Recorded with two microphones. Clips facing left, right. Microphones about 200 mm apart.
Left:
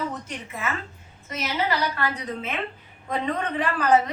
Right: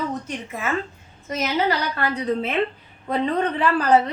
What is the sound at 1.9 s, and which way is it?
A woman's voice, 35° right (ahead or behind).